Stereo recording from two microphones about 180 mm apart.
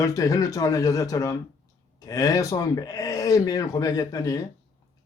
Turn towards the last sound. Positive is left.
turn(degrees=20)  # may be behind; listen again after turning